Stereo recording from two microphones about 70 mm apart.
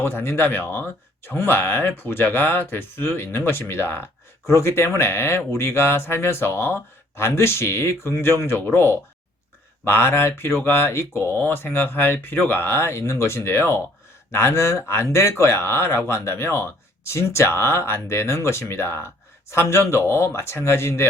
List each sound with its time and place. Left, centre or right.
0.0 s speech: left